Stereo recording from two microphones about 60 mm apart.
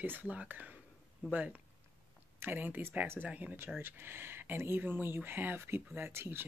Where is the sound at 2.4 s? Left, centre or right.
Right.